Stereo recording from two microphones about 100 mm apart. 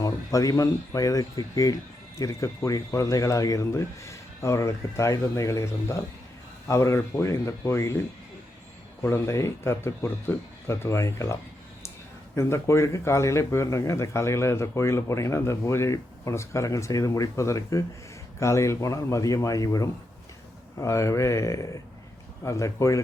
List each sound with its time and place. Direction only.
0.0 s speech: 35° left (ahead or behind)
12.4 s speech: 30° left (ahead or behind)